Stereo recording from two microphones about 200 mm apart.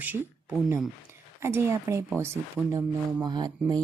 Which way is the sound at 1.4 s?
15° right (ahead or behind).